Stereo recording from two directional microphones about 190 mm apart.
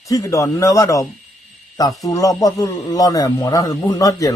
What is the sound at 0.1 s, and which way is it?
Speech, 15° left (ahead or behind).